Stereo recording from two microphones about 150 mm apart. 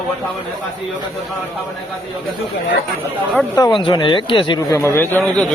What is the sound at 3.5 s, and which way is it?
Speech, 25° left (ahead or behind).